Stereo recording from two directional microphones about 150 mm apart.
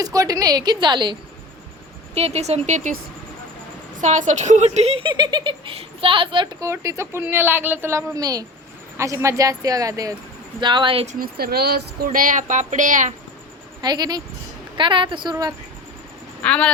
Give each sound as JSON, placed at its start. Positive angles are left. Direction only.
{"t": 0.0, "sound": "a woman's voice", "side_deg": -25}
{"t": 2.1, "sound": "speech", "side_deg": -45}
{"t": 4.0, "sound": "a woman's voice", "side_deg": -50}
{"t": 11.0, "sound": "speech", "side_deg": -55}
{"t": 11.3, "sound": "speech", "side_deg": -90}
{"t": 13.8, "sound": "a woman's voice", "side_deg": -30}
{"t": 16.4, "sound": "speech", "side_deg": 10}